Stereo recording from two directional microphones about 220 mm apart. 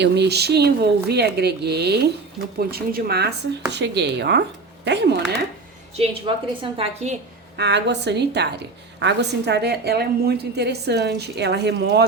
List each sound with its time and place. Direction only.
0.0 s a woman's voice: 50° right (ahead or behind)
6.0 s a woman's voice: 25° right (ahead or behind)
7.5 s a woman's voice: 50° right (ahead or behind)